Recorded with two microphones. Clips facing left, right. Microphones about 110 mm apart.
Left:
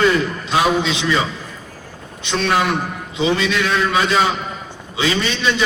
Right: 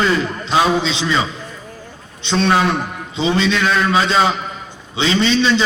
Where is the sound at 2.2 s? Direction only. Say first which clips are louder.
Right 3 dB; 30° right (ahead or behind).